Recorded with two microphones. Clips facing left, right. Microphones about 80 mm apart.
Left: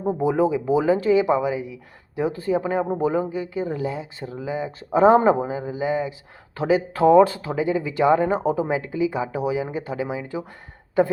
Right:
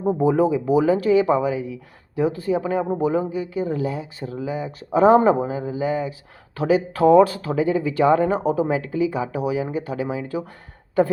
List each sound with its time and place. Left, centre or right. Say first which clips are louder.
0.2 s speech: right 1 dB; left